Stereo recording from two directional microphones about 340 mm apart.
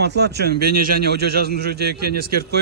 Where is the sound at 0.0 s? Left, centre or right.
Right.